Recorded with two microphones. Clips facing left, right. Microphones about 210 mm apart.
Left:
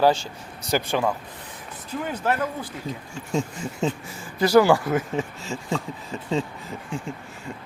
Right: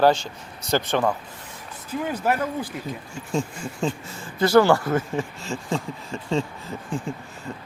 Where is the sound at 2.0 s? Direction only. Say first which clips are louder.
Right 1 dB; 10° right (ahead or behind).